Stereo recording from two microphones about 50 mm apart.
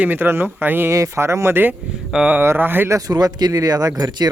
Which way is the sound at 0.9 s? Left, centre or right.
Right.